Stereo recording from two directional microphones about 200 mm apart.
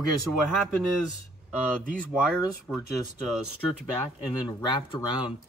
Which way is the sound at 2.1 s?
5° right (ahead or behind).